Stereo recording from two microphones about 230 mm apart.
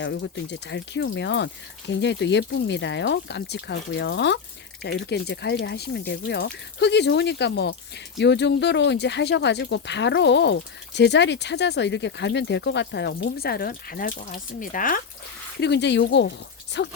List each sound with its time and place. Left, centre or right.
0.0 s speech: left
15.6 s speech: left